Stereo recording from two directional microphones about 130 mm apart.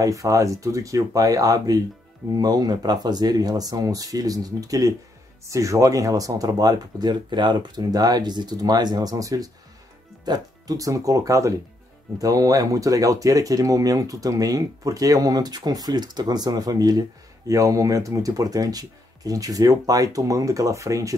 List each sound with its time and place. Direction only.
0.0 s speech: 25° right (ahead or behind)